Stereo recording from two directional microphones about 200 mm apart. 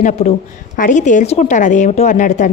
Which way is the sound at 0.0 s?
35° left (ahead or behind).